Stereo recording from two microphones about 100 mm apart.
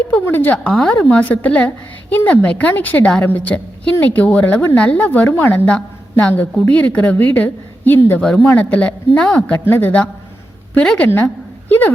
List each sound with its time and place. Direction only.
0.1 s a woman's voice: 20° left (ahead or behind)